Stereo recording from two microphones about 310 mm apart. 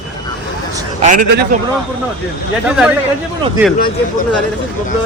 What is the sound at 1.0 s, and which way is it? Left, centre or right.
Speech, right.